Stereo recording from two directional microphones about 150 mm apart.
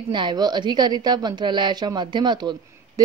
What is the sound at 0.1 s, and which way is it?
A woman's voice, 30° right (ahead or behind).